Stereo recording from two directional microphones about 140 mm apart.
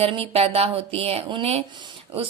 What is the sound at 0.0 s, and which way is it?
A woman's voice, 45° right (ahead or behind).